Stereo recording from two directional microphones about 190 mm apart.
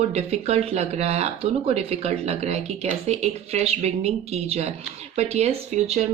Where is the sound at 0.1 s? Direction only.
35° right (ahead or behind).